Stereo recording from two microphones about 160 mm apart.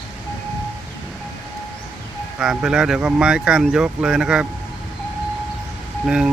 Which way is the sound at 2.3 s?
5° right (ahead or behind).